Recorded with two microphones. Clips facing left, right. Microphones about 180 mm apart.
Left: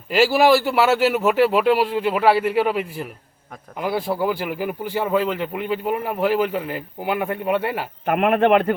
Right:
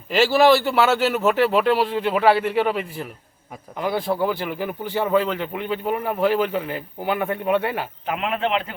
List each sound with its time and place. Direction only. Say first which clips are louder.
0.1 s speech: even; 10° left (ahead or behind)
8.0 s speech: left 8 dB; 55° left (ahead or behind)